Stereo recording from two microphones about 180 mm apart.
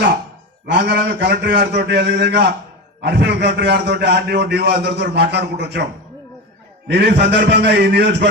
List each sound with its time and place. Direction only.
0.7 s a man's voice: 70° right (ahead or behind)
6.8 s a man's voice: 70° right (ahead or behind)